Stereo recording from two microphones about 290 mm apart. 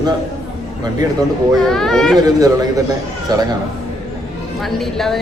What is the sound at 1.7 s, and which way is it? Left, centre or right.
Speech, centre.